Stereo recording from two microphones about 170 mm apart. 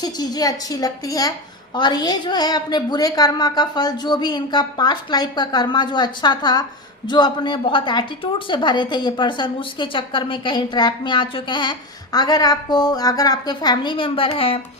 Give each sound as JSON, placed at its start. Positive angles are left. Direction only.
{"t": 0.0, "sound": "a woman's voice", "side_deg": 25}